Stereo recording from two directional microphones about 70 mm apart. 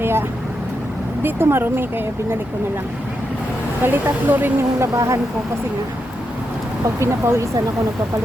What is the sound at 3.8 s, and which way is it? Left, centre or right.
Speech, right.